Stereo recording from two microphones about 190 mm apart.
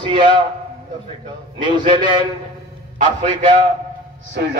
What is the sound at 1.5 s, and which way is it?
Speech, 25° right (ahead or behind).